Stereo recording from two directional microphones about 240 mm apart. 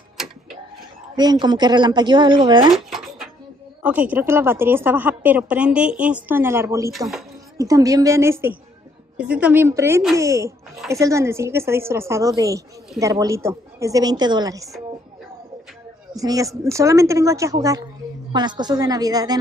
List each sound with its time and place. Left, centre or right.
1.1 s speech: centre
2.7 s a sound: centre
3.8 s a woman's voice: centre
16.2 s a woman's voice: centre